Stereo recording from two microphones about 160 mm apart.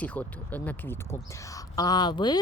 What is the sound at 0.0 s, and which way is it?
Speech, 10° left (ahead or behind).